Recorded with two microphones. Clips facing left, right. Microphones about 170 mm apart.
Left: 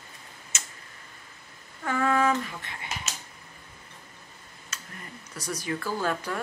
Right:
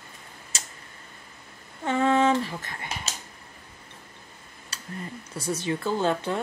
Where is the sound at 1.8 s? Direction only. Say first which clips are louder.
Right 3 dB; 25° right (ahead or behind).